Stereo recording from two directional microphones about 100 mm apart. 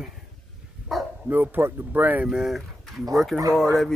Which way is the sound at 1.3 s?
20° right (ahead or behind).